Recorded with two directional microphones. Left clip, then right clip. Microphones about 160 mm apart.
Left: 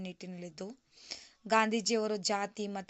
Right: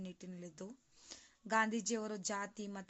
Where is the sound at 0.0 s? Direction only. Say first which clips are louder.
Left 7 dB; 25° left (ahead or behind).